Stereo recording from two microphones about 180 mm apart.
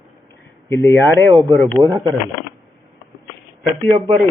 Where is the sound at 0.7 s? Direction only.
15° left (ahead or behind).